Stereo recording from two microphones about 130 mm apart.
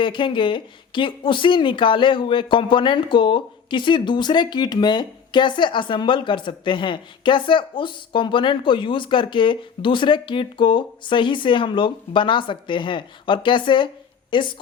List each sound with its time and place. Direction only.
0.0 s speech: 40° left (ahead or behind)